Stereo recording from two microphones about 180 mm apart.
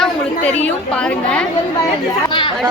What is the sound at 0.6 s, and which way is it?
Speech, 5° left (ahead or behind).